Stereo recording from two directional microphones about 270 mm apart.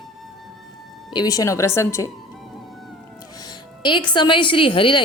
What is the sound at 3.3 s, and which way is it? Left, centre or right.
A woman's voice, centre.